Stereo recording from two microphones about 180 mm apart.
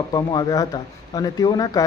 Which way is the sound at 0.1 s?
20° left (ahead or behind).